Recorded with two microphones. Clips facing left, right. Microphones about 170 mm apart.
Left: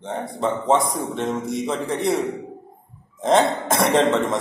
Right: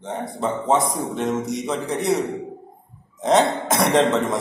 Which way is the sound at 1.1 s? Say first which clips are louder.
Right 2 dB; 30° left (ahead or behind).